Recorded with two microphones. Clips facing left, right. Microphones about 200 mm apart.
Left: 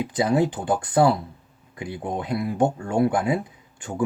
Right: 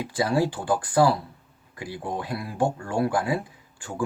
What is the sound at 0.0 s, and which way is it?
Speech, 20° left (ahead or behind).